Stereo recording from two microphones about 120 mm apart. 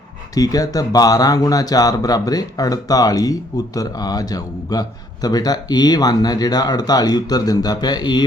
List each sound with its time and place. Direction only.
0.3 s a man's voice: 30° left (ahead or behind)